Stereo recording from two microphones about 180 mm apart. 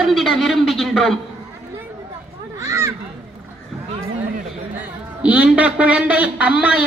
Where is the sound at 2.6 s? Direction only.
15° right (ahead or behind).